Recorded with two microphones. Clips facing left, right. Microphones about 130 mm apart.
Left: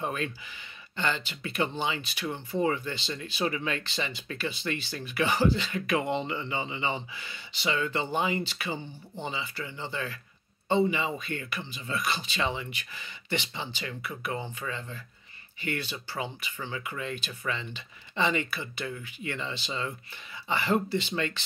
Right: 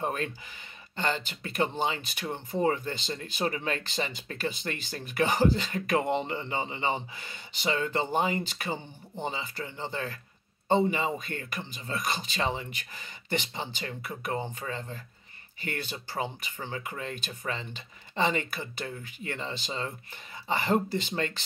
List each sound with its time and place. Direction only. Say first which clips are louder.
0.0 s speech: right 1 dB; 45° right (ahead or behind)